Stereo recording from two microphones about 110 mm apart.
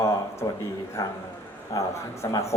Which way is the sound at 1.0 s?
30° left (ahead or behind).